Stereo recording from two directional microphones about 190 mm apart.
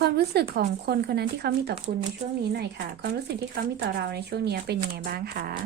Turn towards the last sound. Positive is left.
turn(degrees=-50)  # may be behind; listen again after turning